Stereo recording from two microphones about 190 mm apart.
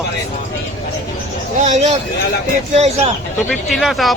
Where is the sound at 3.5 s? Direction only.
Centre (ahead or behind).